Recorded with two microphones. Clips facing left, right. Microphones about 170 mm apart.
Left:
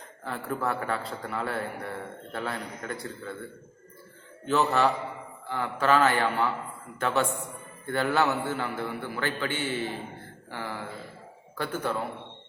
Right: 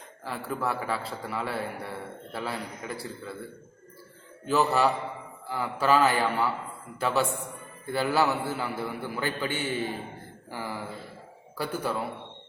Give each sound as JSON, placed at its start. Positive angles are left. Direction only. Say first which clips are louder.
{"t": 0.3, "sound": "a man's voice", "louder": "left 1 dB", "side_deg": -5}
{"t": 4.4, "sound": "a man's voice", "louder": "even", "side_deg": -10}